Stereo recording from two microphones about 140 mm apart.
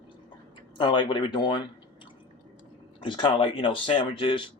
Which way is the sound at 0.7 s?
30° left (ahead or behind).